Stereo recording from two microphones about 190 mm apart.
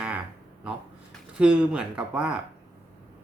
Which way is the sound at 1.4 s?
5° right (ahead or behind).